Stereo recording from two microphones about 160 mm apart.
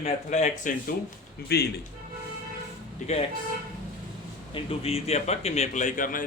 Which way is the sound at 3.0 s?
45° left (ahead or behind).